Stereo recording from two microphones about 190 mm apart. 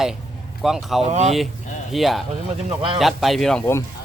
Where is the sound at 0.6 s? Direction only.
Centre (ahead or behind).